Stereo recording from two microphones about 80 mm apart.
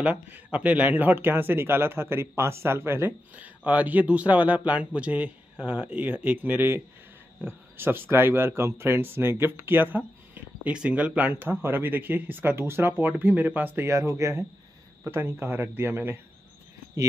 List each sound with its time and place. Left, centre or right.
0.0 s speech: centre; by 3.1 s right
3.3 s speech: centre
13.8 s speech: right